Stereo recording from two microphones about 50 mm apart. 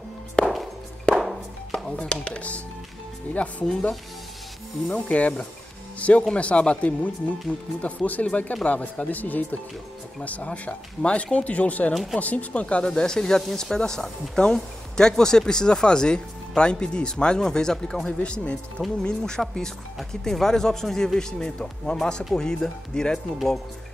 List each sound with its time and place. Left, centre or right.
0.4 s music: centre
1.7 s chopping: centre
2.0 s speech: centre
3.4 s speech: centre
4.8 s speech: left
11.9 s speech: centre
12.2 s speech: left; by 23.6 s centre